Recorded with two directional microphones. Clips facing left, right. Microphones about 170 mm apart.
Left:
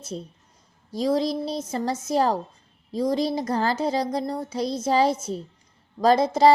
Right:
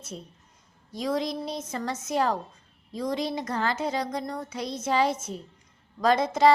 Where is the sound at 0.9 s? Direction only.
35° left (ahead or behind).